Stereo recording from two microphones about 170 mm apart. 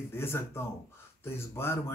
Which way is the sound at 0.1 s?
15° left (ahead or behind).